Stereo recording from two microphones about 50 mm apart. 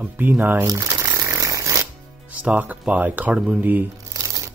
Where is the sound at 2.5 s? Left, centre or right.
Right.